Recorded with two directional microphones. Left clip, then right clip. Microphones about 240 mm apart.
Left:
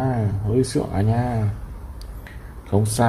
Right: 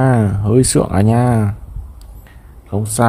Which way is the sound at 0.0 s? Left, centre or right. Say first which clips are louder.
Right 9 dB; right.